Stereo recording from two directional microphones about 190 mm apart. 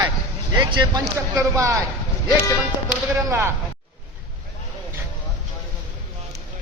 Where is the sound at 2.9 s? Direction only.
10° right (ahead or behind).